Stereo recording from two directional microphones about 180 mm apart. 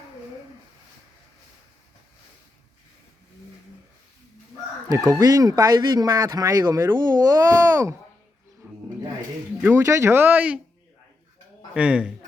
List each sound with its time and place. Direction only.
5.0 s speech: 20° right (ahead or behind)
8.6 s bird: 10° right (ahead or behind)
9.6 s speech: 10° right (ahead or behind)
11.7 s speech: 5° right (ahead or behind)